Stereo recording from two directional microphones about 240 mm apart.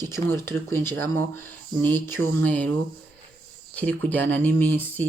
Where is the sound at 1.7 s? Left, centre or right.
Centre.